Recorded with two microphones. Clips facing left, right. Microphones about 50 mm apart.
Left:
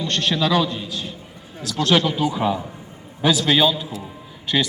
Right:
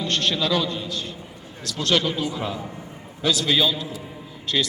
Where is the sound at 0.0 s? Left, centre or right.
Centre.